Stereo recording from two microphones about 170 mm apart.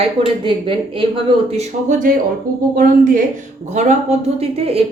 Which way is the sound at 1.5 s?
45° right (ahead or behind).